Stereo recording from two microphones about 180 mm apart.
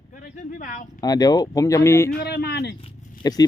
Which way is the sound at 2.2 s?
65° left (ahead or behind).